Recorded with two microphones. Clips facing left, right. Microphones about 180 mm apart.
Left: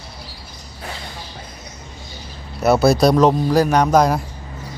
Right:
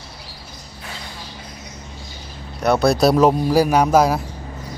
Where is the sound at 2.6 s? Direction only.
5° left (ahead or behind).